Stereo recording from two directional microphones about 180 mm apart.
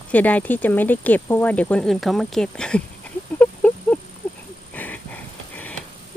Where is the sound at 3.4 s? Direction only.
10° left (ahead or behind).